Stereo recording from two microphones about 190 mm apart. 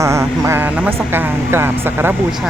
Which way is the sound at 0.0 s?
15° right (ahead or behind).